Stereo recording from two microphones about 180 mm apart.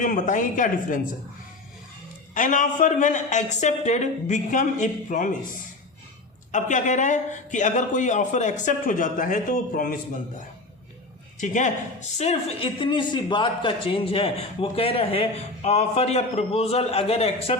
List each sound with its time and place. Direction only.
0.0 s speech: 45° left (ahead or behind)
2.3 s speech: 45° left (ahead or behind)
11.3 s speech: 45° left (ahead or behind)